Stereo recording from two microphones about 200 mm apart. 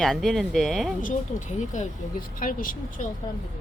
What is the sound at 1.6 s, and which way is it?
Speech, 35° left (ahead or behind).